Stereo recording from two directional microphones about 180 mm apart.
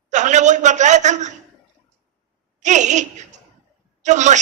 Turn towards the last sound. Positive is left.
turn(degrees=-40)  # may be behind; listen again after turning